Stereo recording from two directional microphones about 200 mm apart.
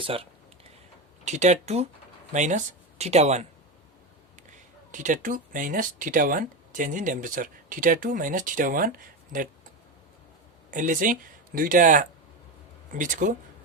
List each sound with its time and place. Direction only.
0.0 s speech: 25° right (ahead or behind)
4.9 s speech: 40° right (ahead or behind)
10.7 s speech: 40° right (ahead or behind)